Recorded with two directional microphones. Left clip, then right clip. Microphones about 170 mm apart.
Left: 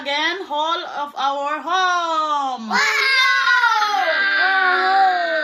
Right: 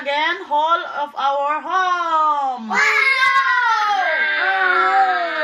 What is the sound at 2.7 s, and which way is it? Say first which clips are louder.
Babbling: right 2 dB; 15° left (ahead or behind).